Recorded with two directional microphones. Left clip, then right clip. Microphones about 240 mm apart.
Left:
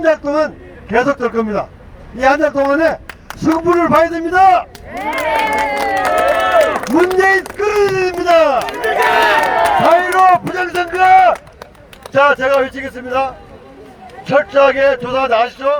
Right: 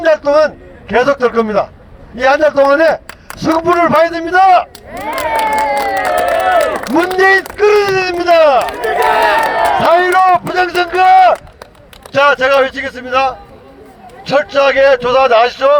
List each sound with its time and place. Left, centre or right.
0.0 s a man's voice: right
8.8 s crowd: right
9.8 s run: right
12.1 s a man's voice: right